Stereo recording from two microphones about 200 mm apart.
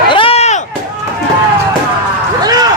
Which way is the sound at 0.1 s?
25° left (ahead or behind).